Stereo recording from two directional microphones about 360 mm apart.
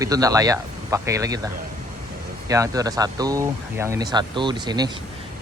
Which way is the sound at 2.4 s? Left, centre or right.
Centre.